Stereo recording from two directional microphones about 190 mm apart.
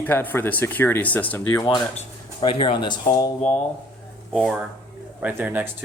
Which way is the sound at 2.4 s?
25° left (ahead or behind).